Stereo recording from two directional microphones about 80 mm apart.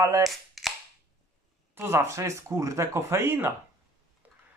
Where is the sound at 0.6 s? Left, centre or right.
Centre.